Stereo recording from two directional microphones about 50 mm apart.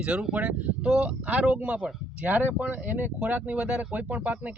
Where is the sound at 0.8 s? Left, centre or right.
Centre.